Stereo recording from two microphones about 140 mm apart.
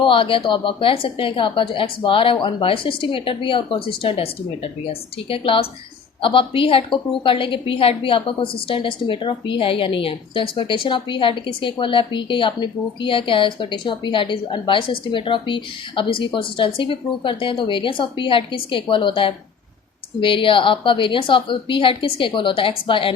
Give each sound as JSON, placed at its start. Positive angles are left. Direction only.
{"t": 0.0, "sound": "a woman's voice", "side_deg": 40}